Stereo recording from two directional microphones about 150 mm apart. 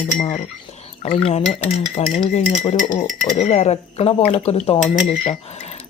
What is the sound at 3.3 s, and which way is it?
Speech, 50° left (ahead or behind).